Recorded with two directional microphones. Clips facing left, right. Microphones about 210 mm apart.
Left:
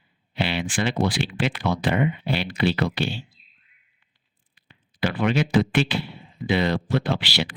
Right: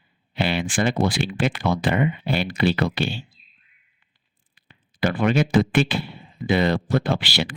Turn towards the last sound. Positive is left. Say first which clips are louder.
# right 2 dB
turn(degrees=-50)  # may be behind; listen again after turning